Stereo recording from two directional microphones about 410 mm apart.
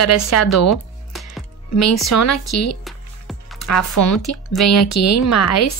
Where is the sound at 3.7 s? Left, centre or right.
Left.